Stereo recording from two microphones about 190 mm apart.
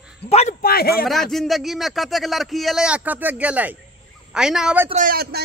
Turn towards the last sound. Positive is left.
turn(degrees=-55)  # may be behind; listen again after turning